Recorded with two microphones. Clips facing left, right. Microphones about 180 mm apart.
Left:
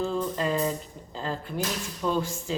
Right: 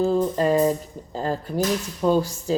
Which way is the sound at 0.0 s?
40° right (ahead or behind).